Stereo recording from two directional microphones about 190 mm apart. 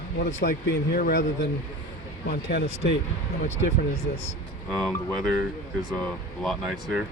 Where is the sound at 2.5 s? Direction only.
60° left (ahead or behind).